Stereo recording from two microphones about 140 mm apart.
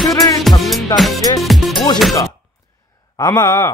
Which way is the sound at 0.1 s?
25° left (ahead or behind).